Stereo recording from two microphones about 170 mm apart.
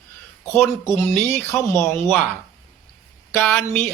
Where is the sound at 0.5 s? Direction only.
15° left (ahead or behind).